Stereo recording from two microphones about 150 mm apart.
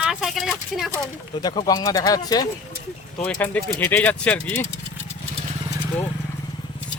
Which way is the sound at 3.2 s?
10° left (ahead or behind).